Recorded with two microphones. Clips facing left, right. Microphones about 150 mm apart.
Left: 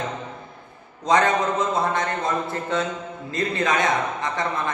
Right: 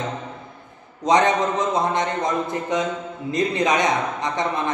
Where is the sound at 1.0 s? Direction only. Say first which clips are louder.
Right 2 dB; 20° right (ahead or behind).